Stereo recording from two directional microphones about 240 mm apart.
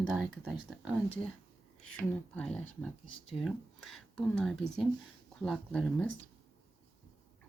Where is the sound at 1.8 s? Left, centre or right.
Centre.